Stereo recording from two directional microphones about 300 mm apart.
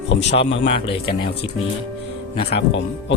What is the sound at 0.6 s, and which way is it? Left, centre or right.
Speech, centre.